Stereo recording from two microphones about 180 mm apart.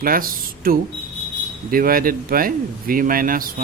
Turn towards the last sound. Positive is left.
turn(degrees=-50)  # may be behind; listen again after turning